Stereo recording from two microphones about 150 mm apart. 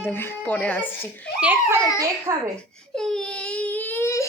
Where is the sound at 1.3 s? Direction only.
10° right (ahead or behind).